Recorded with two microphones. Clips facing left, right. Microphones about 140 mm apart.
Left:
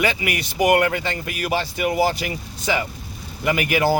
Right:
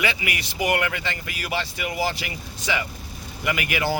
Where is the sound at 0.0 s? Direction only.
40° left (ahead or behind).